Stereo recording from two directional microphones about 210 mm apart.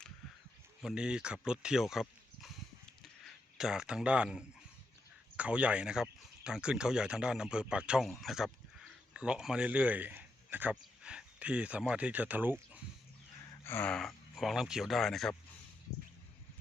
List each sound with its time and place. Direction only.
0.8 s speech: 5° right (ahead or behind)
3.0 s a sound: centre (ahead or behind)
5.4 s speech: 5° right (ahead or behind)
13.7 s speech: 10° left (ahead or behind)